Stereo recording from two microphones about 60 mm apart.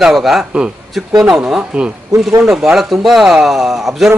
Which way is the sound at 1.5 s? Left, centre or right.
Centre.